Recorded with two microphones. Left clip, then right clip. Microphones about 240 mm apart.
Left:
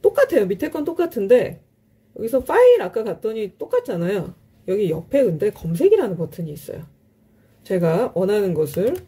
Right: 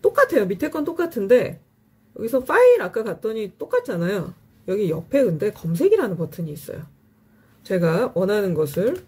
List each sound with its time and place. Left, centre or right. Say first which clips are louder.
0.0 s speech: left 1 dB; centre